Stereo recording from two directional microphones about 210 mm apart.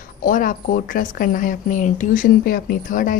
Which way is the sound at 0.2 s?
40° left (ahead or behind).